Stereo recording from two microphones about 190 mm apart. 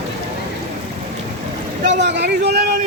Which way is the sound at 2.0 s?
65° right (ahead or behind).